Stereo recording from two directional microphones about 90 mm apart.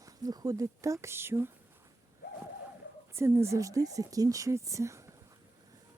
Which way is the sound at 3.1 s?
30° right (ahead or behind).